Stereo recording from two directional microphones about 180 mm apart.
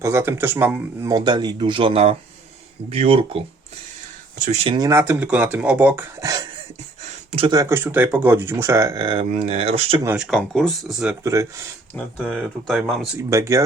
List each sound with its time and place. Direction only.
0.0 s speech: 15° right (ahead or behind)
1.1 s speech: 25° right (ahead or behind)
4.9 s speech: 15° right (ahead or behind)
7.3 s speech: 30° right (ahead or behind)
10.2 s speech: centre (ahead or behind)
11.2 s speech: 15° right (ahead or behind)
12.2 s speech: 5° right (ahead or behind)
13.3 s speech: 15° right (ahead or behind)